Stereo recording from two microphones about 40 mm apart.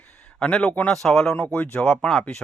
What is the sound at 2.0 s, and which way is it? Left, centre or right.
Speech, centre.